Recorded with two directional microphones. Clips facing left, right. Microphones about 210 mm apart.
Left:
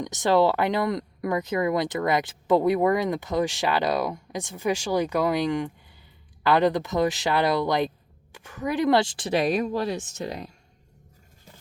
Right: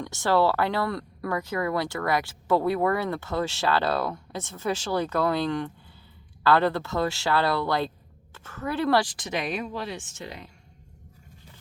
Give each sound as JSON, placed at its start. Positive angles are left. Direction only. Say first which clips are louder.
{"t": 0.0, "sound": "speech", "louder": "left 2 dB", "side_deg": 20}